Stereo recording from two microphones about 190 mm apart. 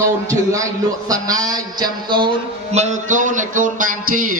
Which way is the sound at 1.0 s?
20° right (ahead or behind).